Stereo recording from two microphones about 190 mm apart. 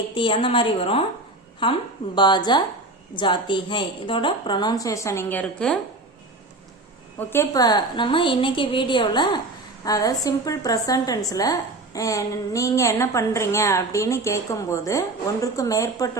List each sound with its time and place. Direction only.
0.1 s a woman's voice: 25° left (ahead or behind); by 5.8 s 5° left (ahead or behind)
7.2 s a woman's voice: 10° left (ahead or behind)